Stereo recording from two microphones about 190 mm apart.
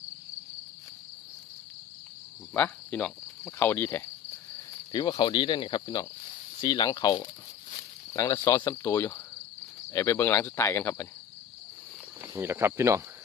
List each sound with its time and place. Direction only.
2.5 s cricket: 10° left (ahead or behind)
4.9 s speech: 20° left (ahead or behind)
12.2 s speech: 15° right (ahead or behind)